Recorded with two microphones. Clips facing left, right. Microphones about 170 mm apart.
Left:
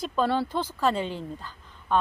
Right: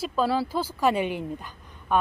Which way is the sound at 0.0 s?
5° right (ahead or behind).